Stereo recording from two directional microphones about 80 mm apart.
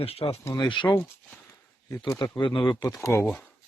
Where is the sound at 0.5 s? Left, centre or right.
Left.